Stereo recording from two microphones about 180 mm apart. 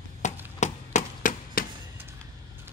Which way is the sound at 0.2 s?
40° left (ahead or behind).